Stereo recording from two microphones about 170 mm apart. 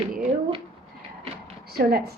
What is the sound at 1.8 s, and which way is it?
Speech, 70° right (ahead or behind).